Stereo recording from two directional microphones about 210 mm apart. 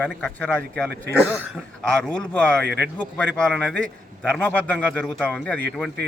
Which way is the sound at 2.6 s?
50° right (ahead or behind).